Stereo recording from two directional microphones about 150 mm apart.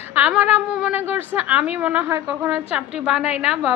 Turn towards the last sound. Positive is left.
turn(degrees=-5)  # may be behind; listen again after turning